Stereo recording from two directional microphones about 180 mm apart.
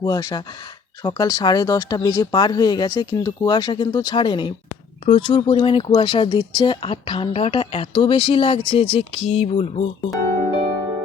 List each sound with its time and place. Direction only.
0.0 s speech: 20° left (ahead or behind); by 10.1 s 35° left (ahead or behind)
10.4 s music: 35° right (ahead or behind)